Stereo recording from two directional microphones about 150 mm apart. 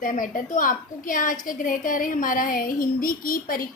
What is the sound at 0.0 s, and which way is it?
A woman's voice, 65° left (ahead or behind).